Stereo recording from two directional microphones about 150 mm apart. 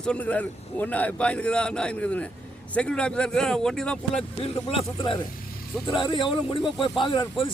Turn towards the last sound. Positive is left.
turn(degrees=30)  # may be behind; listen again after turning